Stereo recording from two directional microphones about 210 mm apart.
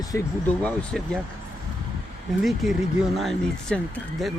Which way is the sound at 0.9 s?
Centre (ahead or behind).